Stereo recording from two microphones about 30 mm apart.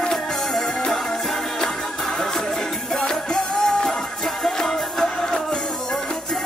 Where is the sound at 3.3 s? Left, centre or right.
Centre.